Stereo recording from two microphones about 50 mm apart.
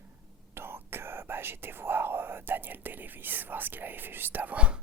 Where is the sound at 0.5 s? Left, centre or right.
Right.